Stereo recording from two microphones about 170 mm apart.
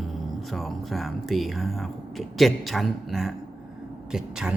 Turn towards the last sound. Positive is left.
turn(degrees=-5)  # may be behind; listen again after turning